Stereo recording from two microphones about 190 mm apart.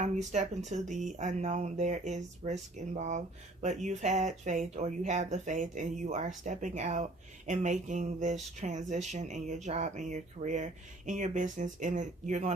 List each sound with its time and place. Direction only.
0.0 s speech: 40° right (ahead or behind)